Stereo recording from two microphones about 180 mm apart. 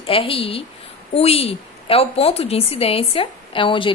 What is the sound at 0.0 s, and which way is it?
A woman's voice, 30° left (ahead or behind).